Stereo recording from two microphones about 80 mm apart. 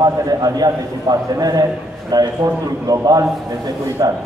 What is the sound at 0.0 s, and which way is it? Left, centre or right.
A man's voice, right.